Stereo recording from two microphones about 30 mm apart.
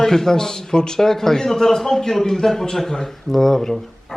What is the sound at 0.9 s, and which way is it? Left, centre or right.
Speech, centre.